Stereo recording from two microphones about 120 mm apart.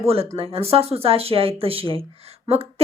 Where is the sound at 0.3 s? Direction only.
50° right (ahead or behind).